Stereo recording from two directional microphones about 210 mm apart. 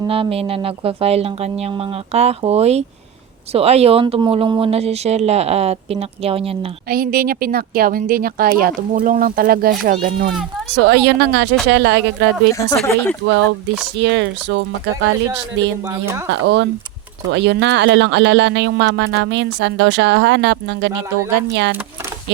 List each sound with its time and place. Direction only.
0.0 s speech: 25° right (ahead or behind)
6.8 s a woman's voice: 45° right (ahead or behind)
10.7 s speech: 55° right (ahead or behind)
12.5 s speech: 10° left (ahead or behind)
13.2 s speech: 60° right (ahead or behind)
20.9 s speech: 15° right (ahead or behind)
21.5 s speech: 60° right (ahead or behind)